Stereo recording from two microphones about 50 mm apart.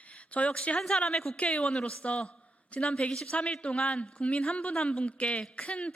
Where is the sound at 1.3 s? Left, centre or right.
Left.